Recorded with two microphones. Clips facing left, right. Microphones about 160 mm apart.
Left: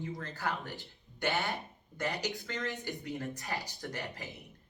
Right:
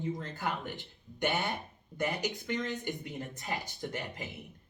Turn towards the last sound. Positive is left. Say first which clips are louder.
# right 2 dB
turn(degrees=-20)  # may be behind; listen again after turning